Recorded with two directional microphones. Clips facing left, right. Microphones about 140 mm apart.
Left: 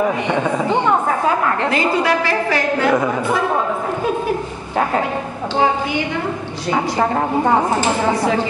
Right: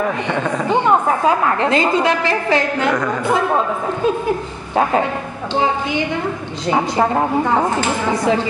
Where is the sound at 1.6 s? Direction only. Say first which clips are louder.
Right 2 dB; 20° right (ahead or behind).